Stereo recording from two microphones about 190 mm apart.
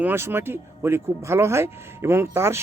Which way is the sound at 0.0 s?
10° right (ahead or behind).